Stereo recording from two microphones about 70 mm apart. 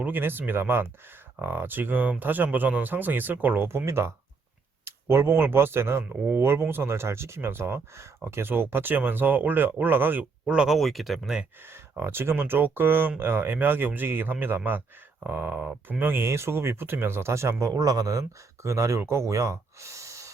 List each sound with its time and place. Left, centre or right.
0.0 s speech: right
3.7 s speech: right
10.5 s speech: centre
10.8 s speech: centre
11.6 s speech: right